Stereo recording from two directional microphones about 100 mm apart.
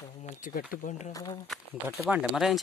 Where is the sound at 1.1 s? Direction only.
40° left (ahead or behind).